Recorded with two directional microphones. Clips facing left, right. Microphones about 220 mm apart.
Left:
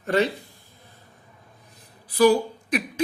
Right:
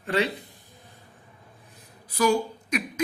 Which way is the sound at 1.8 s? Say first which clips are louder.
Left 7 dB; 35° left (ahead or behind).